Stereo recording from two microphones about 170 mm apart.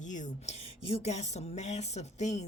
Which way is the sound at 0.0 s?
45° left (ahead or behind).